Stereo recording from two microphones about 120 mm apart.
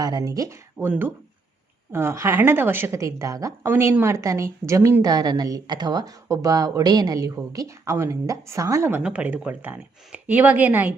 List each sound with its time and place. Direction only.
0.0 s a woman's voice: 30° right (ahead or behind); by 10.9 s 15° right (ahead or behind)